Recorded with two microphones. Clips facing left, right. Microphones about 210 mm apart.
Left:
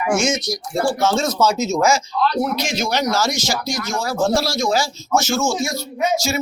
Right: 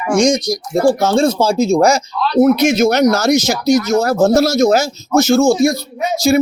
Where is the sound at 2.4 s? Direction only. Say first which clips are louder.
Right 11 dB; 50° right (ahead or behind).